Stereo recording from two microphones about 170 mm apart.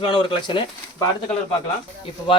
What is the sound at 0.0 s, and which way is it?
Speech, 25° left (ahead or behind).